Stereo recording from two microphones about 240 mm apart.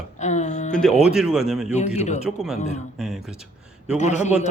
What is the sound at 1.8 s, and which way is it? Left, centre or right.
Speech, left.